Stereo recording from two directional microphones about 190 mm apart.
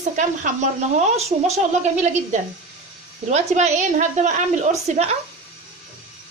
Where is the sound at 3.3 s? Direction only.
40° right (ahead or behind).